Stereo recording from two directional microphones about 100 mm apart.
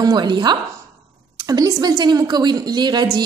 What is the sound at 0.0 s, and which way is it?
A woman's voice, 45° right (ahead or behind).